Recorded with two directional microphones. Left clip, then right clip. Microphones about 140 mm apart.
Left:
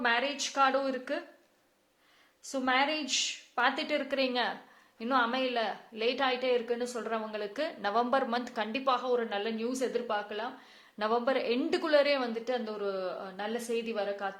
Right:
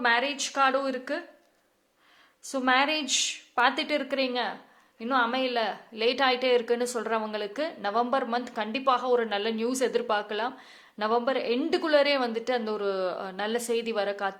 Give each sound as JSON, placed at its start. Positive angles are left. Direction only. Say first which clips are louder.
{"t": 0.0, "sound": "a woman's voice", "louder": "right 4 dB", "side_deg": -10}
{"t": 2.4, "sound": "a woman's voice", "louder": "right 4 dB", "side_deg": -25}
{"t": 10.9, "sound": "a woman's voice", "louder": "right 3 dB", "side_deg": -10}